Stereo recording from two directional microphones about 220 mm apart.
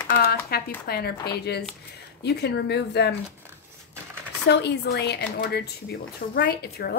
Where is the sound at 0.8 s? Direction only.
45° left (ahead or behind).